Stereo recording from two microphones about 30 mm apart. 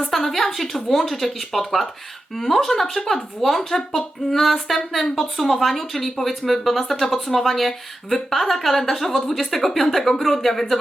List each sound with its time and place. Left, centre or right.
0.1 s a woman's voice: centre